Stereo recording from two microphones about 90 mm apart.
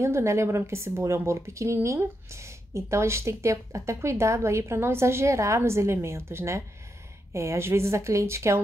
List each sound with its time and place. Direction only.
0.0 s a woman's voice: 30° right (ahead or behind)